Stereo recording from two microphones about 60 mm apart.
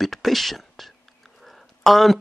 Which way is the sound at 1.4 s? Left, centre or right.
Centre.